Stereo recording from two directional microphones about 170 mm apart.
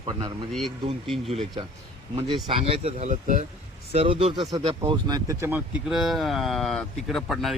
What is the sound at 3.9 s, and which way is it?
Speech, 35° right (ahead or behind).